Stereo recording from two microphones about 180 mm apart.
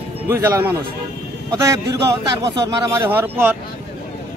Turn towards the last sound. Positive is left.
turn(degrees=-10)  # may be behind; listen again after turning